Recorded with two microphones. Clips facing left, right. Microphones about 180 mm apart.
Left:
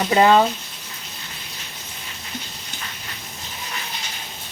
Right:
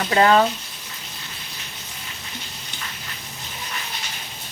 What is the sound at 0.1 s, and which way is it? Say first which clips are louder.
Speech: left 1 dB; 20° left (ahead or behind).